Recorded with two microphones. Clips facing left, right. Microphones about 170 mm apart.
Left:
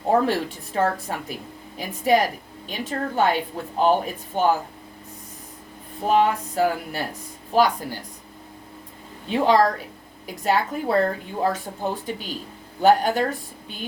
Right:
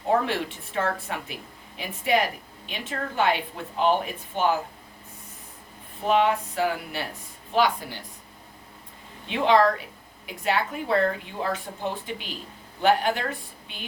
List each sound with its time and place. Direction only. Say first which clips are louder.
0.1 s a woman's voice: left 4 dB; 35° left (ahead or behind)
6.1 s a woman's voice: left 2 dB; 40° left (ahead or behind)
9.2 s a woman's voice: left 2 dB; 40° left (ahead or behind)